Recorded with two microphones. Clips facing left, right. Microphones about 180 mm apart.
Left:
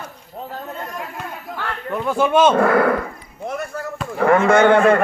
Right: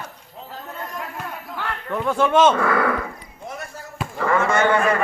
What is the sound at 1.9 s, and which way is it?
Speech, 10° left (ahead or behind).